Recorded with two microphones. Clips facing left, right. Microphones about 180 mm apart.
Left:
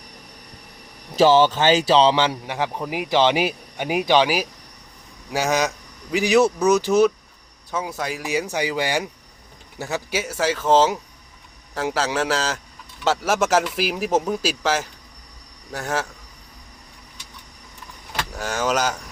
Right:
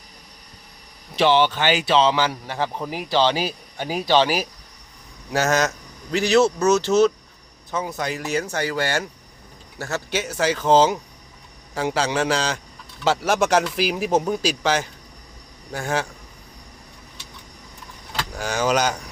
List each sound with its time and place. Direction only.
1.1 s a man's voice: 45° left (ahead or behind); by 16.0 s centre (ahead or behind)
18.3 s speech: centre (ahead or behind)